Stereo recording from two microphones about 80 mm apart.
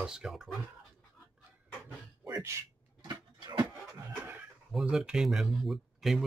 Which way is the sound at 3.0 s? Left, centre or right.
Right.